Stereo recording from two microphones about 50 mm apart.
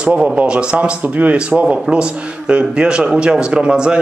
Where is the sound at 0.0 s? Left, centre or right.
Right.